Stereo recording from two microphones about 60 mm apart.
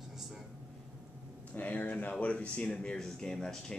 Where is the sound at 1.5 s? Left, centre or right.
Left.